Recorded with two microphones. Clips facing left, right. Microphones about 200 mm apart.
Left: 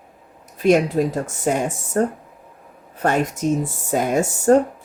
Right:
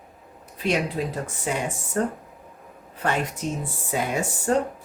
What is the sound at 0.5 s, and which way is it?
Speech, 45° left (ahead or behind).